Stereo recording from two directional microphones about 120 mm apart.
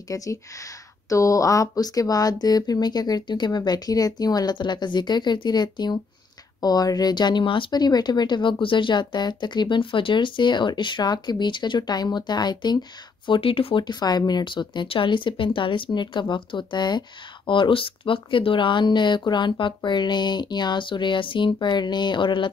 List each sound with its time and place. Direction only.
0.1 s speech: 30° left (ahead or behind)
13.3 s speech: 50° left (ahead or behind)